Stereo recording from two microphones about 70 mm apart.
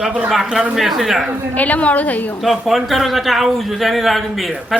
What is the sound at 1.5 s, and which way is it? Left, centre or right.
Speech, left.